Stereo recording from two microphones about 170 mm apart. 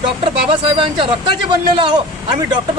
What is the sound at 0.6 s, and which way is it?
Speech, 30° right (ahead or behind).